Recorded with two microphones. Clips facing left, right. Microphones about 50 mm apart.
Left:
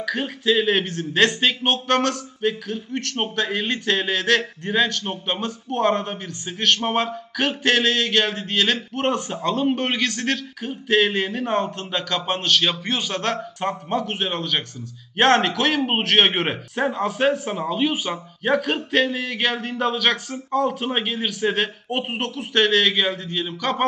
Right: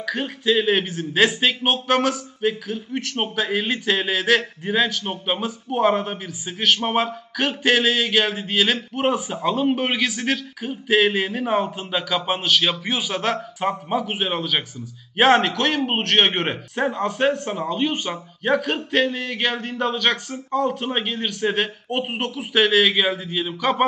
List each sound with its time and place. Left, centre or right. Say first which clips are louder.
0.0 s speech: even; centre